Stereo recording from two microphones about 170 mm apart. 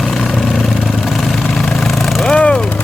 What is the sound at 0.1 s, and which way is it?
Vehicle, centre (ahead or behind).